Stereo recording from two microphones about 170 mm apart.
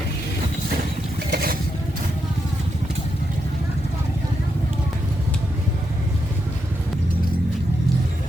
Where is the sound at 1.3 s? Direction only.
60° right (ahead or behind).